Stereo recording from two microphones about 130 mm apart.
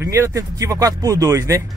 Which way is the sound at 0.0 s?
20° right (ahead or behind).